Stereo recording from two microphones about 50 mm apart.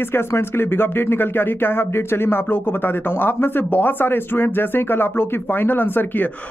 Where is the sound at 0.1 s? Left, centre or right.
Left.